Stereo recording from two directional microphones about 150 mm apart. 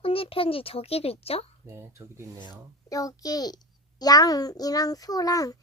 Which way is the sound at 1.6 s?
15° right (ahead or behind).